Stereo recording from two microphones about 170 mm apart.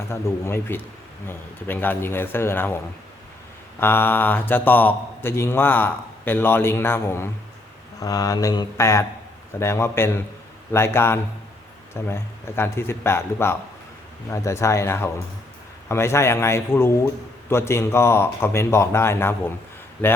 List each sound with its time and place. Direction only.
0.1 s speech: 15° left (ahead or behind)